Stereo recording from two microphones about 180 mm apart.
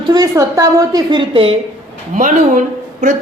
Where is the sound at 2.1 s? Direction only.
45° right (ahead or behind).